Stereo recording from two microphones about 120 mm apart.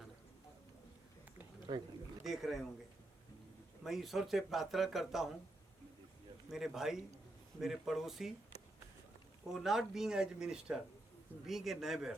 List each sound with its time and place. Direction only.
1.7 s speech: 40° right (ahead or behind)
2.2 s speech: centre (ahead or behind)
3.8 s speech: centre (ahead or behind)
6.5 s speech: 5° right (ahead or behind)
9.5 s speech: centre (ahead or behind)